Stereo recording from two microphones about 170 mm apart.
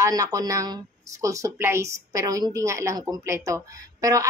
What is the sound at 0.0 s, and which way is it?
Speech, 20° right (ahead or behind).